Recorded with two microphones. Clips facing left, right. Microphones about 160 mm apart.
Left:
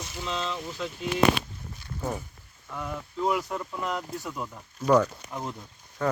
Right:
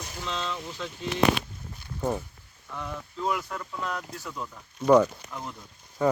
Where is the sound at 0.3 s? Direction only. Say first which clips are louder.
Left 1 dB; 5° left (ahead or behind).